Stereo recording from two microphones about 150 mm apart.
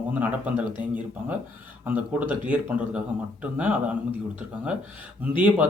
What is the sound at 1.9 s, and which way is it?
Speech, 10° right (ahead or behind).